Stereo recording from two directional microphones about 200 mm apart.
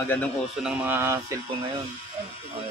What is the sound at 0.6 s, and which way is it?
Speech, 10° right (ahead or behind).